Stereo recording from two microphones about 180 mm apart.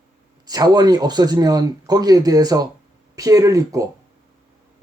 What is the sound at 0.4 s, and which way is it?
Speech, 20° right (ahead or behind).